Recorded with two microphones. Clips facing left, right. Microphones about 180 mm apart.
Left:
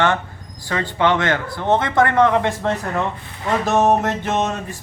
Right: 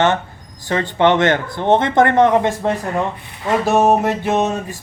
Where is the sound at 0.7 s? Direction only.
25° right (ahead or behind).